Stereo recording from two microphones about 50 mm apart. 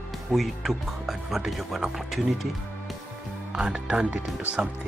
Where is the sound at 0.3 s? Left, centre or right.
Centre.